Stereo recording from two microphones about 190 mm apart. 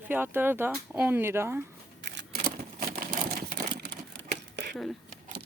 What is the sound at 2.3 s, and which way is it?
Typewriter, 50° right (ahead or behind).